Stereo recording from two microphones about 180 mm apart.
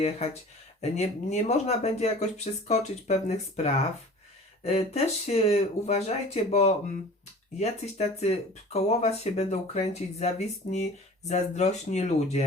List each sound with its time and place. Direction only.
0.8 s speech: 35° left (ahead or behind)